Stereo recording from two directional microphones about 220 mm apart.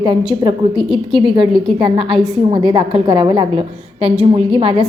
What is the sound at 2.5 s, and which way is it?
A woman's voice, 20° right (ahead or behind).